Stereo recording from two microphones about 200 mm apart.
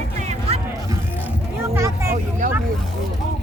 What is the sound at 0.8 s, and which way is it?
Vehicle, 15° right (ahead or behind).